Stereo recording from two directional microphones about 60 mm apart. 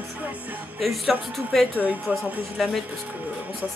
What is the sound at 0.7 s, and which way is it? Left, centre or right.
Speech, centre.